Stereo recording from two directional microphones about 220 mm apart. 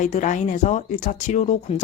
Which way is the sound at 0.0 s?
35° left (ahead or behind).